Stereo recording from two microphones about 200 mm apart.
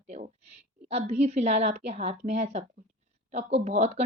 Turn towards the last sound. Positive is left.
turn(degrees=-35)  # may be behind; listen again after turning